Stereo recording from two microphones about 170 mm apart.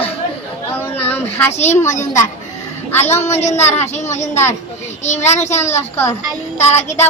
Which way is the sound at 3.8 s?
40° left (ahead or behind).